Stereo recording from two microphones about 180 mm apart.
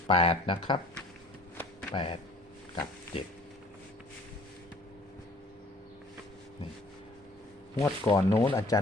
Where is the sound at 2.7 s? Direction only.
20° left (ahead or behind).